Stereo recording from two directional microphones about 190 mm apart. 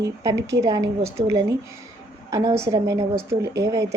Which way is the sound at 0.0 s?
15° right (ahead or behind).